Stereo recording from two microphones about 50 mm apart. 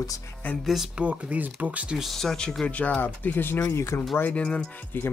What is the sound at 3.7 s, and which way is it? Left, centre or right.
Speech, left.